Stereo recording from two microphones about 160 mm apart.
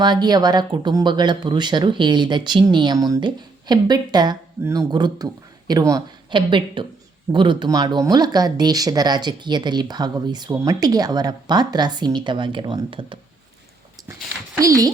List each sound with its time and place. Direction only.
0.0 s speech: 25° right (ahead or behind)
14.6 s speech: 20° right (ahead or behind)